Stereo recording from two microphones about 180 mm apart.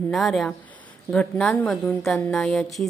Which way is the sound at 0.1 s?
Centre (ahead or behind).